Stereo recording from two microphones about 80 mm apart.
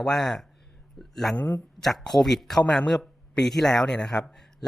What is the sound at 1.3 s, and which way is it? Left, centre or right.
Speech, centre.